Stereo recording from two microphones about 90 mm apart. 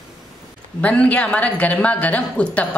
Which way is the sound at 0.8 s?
15° left (ahead or behind).